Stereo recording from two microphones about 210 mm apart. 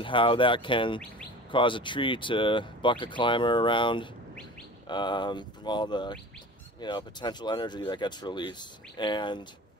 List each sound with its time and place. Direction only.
0.0 s speech: 25° left (ahead or behind)